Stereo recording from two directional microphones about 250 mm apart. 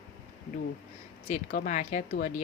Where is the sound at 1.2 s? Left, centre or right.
Left.